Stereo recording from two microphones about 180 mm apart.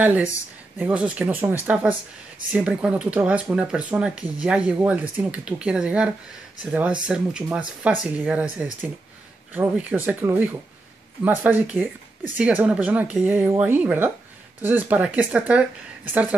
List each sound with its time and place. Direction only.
0.0 s speech: 10° right (ahead or behind)